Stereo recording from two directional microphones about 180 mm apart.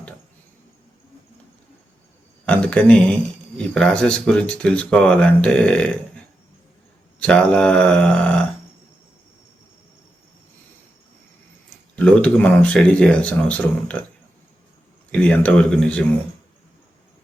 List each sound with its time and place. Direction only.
2.5 s speech: 5° left (ahead or behind)
7.2 s speech: 5° left (ahead or behind)
11.9 s speech: 5° left (ahead or behind)
15.1 s speech: 5° left (ahead or behind)